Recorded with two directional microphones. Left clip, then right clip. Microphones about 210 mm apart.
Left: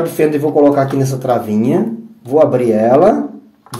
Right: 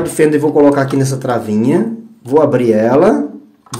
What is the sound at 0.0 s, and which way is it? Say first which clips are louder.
Speech: right 2 dB; 20° right (ahead or behind).